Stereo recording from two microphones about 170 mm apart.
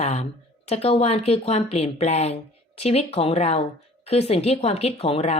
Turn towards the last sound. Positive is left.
turn(degrees=35)  # may be behind; listen again after turning